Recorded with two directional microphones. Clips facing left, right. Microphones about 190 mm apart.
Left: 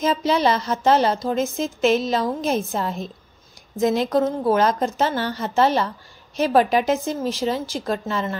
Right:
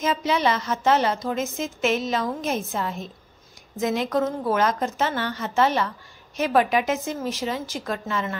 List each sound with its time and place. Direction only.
0.0 s a woman's voice: 35° left (ahead or behind)